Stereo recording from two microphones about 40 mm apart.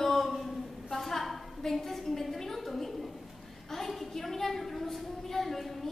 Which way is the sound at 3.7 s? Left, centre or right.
Centre.